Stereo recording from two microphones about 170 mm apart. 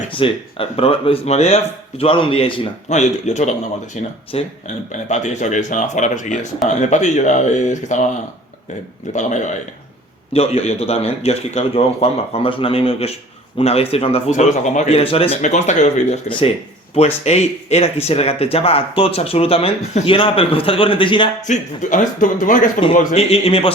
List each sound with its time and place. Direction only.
0.2 s speech: 30° left (ahead or behind)
9.1 s speech: 45° left (ahead or behind)
10.3 s speech: 35° left (ahead or behind)
21.4 s speech: 45° left (ahead or behind)
23.1 s speech: 35° left (ahead or behind)